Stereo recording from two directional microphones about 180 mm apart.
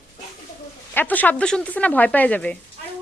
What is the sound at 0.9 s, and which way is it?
Speech, 10° left (ahead or behind).